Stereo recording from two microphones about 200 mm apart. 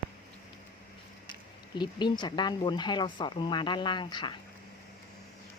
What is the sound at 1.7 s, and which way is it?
Speech, 20° left (ahead or behind).